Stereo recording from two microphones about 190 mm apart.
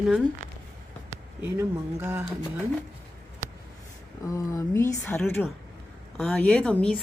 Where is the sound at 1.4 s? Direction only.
10° right (ahead or behind).